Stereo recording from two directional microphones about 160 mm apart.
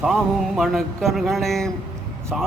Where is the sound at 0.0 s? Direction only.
Centre (ahead or behind).